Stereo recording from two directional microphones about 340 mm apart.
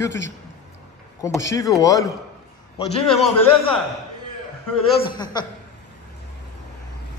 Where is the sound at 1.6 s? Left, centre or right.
Centre.